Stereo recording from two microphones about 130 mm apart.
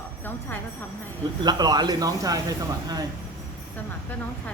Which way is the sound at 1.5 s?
30° right (ahead or behind).